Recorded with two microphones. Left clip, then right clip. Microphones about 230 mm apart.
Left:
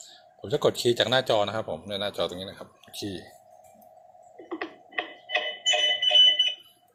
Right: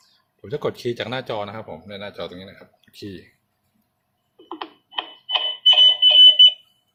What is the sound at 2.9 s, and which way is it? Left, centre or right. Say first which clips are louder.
Speech: left 1 dB; centre.